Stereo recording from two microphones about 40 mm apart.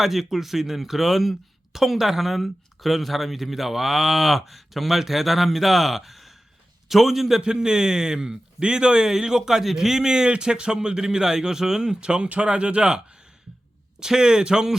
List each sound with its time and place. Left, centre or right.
0.0 s a man's voice: centre; by 13.0 s right
14.0 s a man's voice: centre